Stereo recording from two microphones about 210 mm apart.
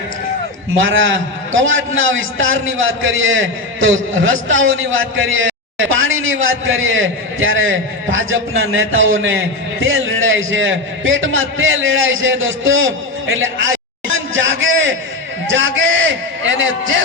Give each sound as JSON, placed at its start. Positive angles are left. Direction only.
{"t": 0.8, "sound": "a man's voice", "side_deg": -65}